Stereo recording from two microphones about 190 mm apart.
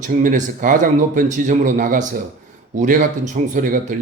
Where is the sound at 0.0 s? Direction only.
45° right (ahead or behind).